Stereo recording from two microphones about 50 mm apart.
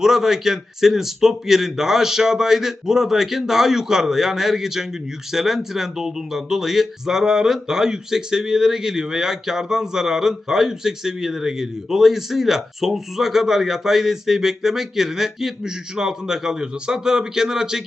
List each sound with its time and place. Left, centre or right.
0.0 s speech: centre